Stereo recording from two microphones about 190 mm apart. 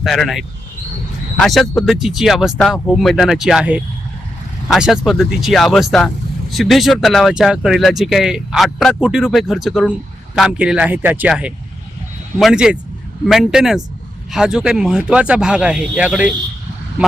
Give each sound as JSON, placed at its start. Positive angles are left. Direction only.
{"t": 0.0, "sound": "speech", "side_deg": 0}